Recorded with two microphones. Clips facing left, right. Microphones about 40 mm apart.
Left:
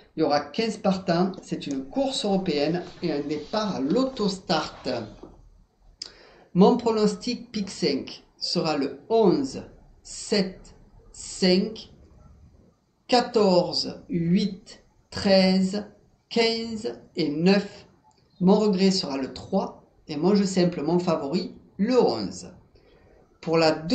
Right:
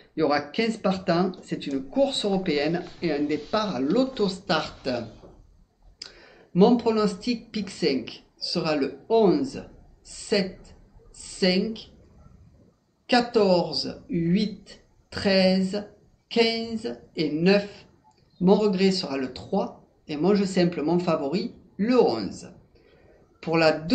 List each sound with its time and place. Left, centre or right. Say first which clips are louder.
0.1 s speech: even; right
5.9 s speech: even; centre
13.0 s speech: even; centre